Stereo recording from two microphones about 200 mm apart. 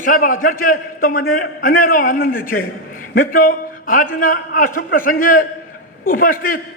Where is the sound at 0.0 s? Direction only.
45° left (ahead or behind).